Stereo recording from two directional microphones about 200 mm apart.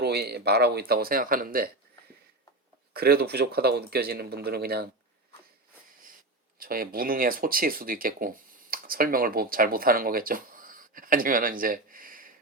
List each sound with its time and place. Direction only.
0.0 s speech: 55° right (ahead or behind)
2.9 s speech: 50° right (ahead or behind)
6.6 s speech: 45° right (ahead or behind)